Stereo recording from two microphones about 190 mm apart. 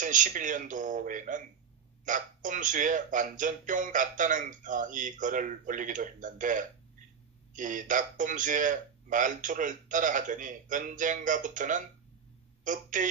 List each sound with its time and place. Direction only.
0.0 s speech: 40° right (ahead or behind)